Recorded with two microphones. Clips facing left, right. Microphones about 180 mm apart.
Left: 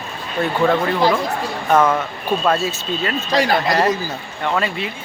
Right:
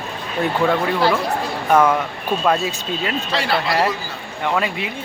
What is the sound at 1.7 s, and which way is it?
Speech, 10° right (ahead or behind).